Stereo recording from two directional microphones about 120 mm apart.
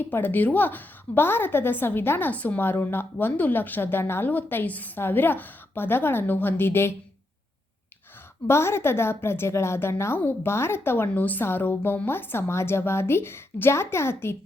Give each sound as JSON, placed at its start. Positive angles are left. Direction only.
{"t": 0.0, "sound": "a woman's voice", "side_deg": 15}
{"t": 8.4, "sound": "a woman's voice", "side_deg": 20}